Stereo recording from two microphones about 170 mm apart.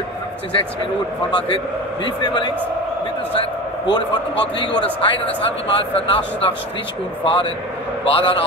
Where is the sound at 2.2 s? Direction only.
25° left (ahead or behind).